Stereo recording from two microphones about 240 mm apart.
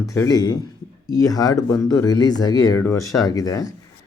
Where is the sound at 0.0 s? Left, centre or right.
Centre.